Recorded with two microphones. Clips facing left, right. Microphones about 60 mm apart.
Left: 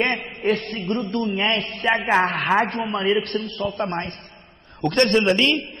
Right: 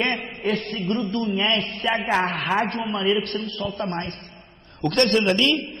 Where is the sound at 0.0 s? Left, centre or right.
Centre.